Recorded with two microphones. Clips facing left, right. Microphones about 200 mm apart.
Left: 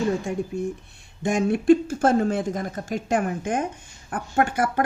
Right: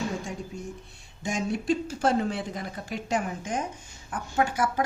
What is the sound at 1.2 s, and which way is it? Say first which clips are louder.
Speech: left 7 dB; 55° left (ahead or behind).